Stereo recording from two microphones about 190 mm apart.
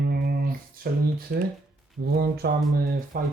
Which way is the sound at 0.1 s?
50° right (ahead or behind).